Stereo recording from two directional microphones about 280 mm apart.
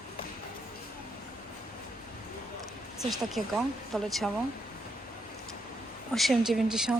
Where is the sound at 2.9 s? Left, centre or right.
Centre.